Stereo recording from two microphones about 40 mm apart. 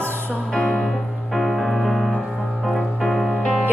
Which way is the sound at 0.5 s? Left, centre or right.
Centre.